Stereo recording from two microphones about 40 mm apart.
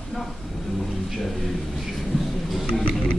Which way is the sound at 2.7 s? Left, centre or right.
Left.